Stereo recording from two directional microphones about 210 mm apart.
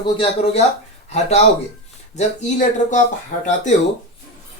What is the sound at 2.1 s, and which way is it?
Speech, 35° left (ahead or behind).